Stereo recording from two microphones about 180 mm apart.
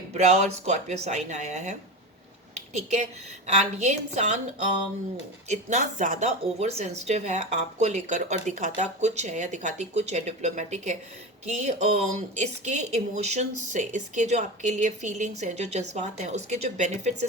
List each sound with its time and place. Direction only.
0.1 s speech: 40° right (ahead or behind)
2.7 s speech: 40° right (ahead or behind)
5.5 s speech: 40° right (ahead or behind)